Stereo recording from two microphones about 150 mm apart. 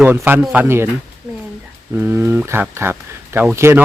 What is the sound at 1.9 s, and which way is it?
Speech, 15° right (ahead or behind).